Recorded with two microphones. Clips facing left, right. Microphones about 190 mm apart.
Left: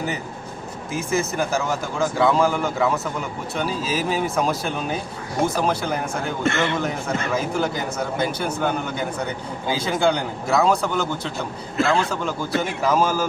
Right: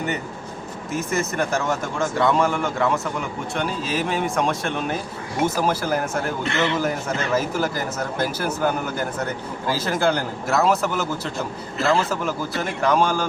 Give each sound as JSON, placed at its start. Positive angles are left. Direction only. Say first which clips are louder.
{"t": 0.9, "sound": "speech", "louder": "left 1 dB", "side_deg": 0}
{"t": 6.4, "sound": "a man's voice", "louder": "left 3 dB", "side_deg": 50}
{"t": 7.3, "sound": "speech", "louder": "right 2 dB", "side_deg": -5}